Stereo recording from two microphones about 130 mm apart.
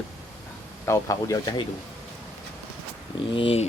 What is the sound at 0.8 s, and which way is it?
Speech, 20° left (ahead or behind).